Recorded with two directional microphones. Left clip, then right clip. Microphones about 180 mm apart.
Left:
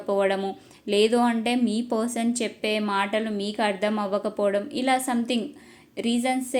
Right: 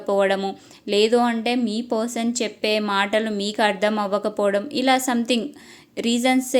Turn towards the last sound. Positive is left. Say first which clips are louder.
# right 5 dB
turn(degrees=-25)  # may be behind; listen again after turning